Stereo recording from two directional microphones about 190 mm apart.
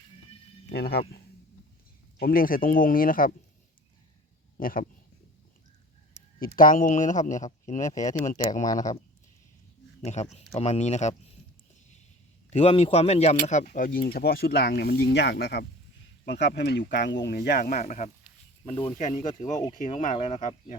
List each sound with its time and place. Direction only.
0.7 s speech: 55° left (ahead or behind)
4.5 s speech: 45° left (ahead or behind)
6.4 s speech: 45° left (ahead or behind)
7.8 s speech: 15° left (ahead or behind)
8.0 s speech: 40° left (ahead or behind)
10.0 s speech: 35° left (ahead or behind)
12.5 s speech: 30° left (ahead or behind); by 17.7 s 55° left (ahead or behind)
17.7 s speech: 40° left (ahead or behind)